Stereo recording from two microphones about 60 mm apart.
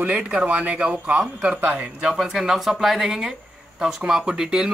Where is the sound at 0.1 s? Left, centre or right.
Centre.